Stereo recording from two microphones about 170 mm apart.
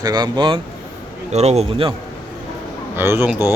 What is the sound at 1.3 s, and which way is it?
Speech, 40° right (ahead or behind).